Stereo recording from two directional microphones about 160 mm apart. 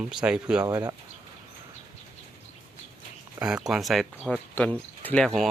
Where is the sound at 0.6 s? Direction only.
20° right (ahead or behind).